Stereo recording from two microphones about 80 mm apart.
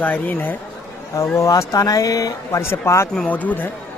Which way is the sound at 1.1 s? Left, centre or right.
Left.